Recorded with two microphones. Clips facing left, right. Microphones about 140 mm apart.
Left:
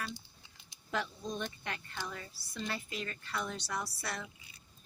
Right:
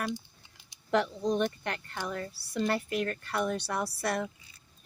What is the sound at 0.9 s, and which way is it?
Speech, 75° right (ahead or behind).